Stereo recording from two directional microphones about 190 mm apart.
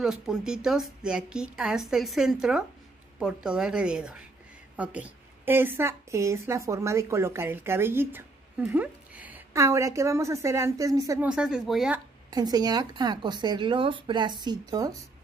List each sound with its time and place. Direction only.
0.0 s a woman's voice: 5° right (ahead or behind)
11.2 s a woman's voice: 5° right (ahead or behind)
12.3 s speech: 20° right (ahead or behind)